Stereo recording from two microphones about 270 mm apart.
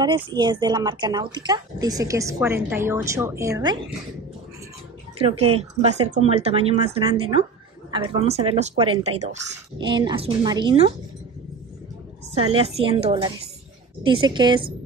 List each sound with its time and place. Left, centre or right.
0.0 s speech: centre
5.6 s speech: right
12.4 s speech: right